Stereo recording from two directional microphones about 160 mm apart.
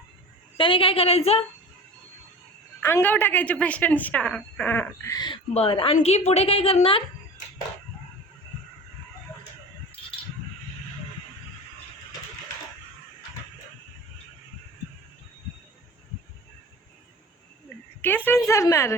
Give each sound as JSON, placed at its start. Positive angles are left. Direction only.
{"t": 0.5, "sound": "a woman's voice", "side_deg": 35}
{"t": 2.8, "sound": "a woman's voice", "side_deg": 15}
{"t": 5.1, "sound": "a woman's voice", "side_deg": 25}
{"t": 18.0, "sound": "a sound", "side_deg": 10}
{"t": 18.4, "sound": "a woman's voice", "side_deg": 20}